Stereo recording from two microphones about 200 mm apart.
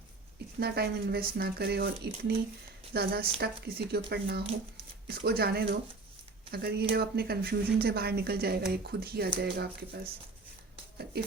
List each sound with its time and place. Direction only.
0.6 s speech: 50° right (ahead or behind)